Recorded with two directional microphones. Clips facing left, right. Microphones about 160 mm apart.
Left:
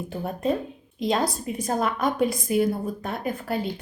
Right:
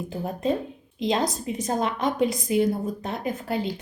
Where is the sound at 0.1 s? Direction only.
30° right (ahead or behind).